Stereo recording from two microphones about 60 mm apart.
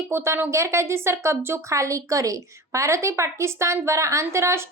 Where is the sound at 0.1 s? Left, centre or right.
Right.